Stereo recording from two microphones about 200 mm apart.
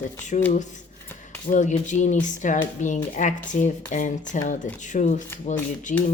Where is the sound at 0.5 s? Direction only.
40° left (ahead or behind).